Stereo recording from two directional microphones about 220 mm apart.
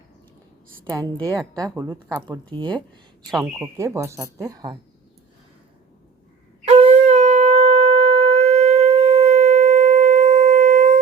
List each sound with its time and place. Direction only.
0.9 s a woman's voice: 15° right (ahead or behind)
6.7 s shofar: 25° right (ahead or behind)